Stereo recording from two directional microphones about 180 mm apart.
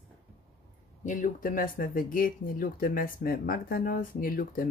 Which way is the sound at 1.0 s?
50° left (ahead or behind).